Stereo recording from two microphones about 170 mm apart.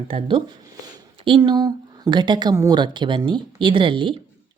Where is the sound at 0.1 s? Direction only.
30° right (ahead or behind).